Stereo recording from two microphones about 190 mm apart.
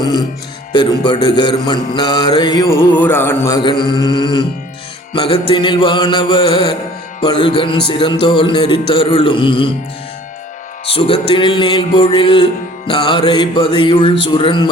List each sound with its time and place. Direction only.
0.7 s music: 25° left (ahead or behind)
2.7 s music: 10° left (ahead or behind); by 9.7 s 25° left (ahead or behind)
10.8 s music: 30° left (ahead or behind)